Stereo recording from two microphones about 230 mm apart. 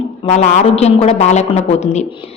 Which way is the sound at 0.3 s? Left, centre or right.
Left.